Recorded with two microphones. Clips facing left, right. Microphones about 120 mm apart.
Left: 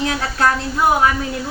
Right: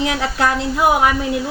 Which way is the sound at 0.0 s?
15° right (ahead or behind).